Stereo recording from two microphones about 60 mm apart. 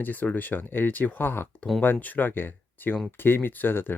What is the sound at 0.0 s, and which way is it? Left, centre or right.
Speech, left.